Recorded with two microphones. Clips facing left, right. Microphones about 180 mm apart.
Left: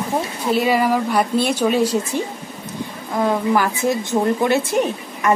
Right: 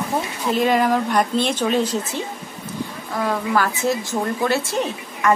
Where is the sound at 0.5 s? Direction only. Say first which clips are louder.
Even; 5° left (ahead or behind).